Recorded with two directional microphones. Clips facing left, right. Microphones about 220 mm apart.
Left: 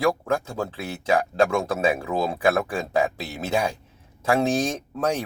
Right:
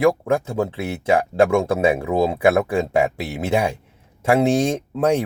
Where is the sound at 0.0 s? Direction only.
25° right (ahead or behind).